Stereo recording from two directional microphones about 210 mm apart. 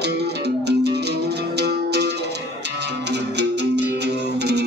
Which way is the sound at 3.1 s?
55° right (ahead or behind).